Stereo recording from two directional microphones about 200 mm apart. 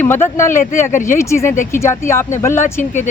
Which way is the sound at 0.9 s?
40° left (ahead or behind).